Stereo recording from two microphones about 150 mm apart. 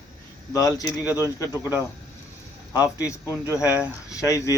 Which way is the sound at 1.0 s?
15° right (ahead or behind).